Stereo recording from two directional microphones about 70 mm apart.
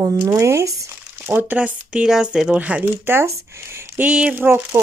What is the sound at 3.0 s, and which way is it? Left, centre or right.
Speech, right.